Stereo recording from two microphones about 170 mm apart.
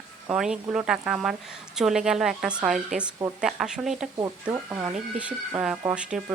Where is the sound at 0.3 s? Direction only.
5° right (ahead or behind).